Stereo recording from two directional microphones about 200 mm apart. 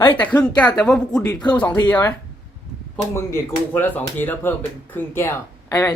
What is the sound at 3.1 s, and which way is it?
Speech, 10° left (ahead or behind).